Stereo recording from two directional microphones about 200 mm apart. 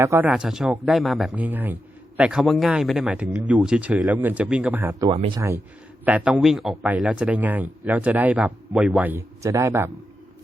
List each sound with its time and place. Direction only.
0.0 s speech: 10° right (ahead or behind)
5.1 s speech: 30° right (ahead or behind)
6.1 s speech: 5° right (ahead or behind)